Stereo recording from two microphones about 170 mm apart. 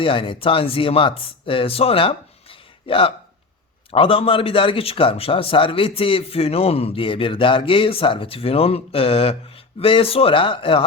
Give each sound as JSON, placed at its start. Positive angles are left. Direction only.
{"t": 0.0, "sound": "a man's voice", "side_deg": 30}